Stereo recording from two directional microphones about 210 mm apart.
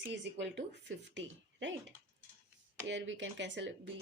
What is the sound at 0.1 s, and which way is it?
Speech, 55° right (ahead or behind).